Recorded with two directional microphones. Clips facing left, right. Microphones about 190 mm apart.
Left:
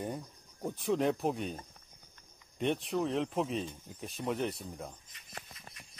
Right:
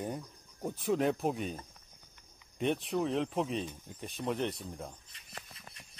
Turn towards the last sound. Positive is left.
turn(degrees=0)  # may be behind; listen again after turning